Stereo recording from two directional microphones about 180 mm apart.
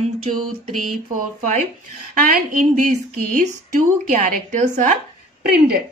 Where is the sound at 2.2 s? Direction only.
50° right (ahead or behind).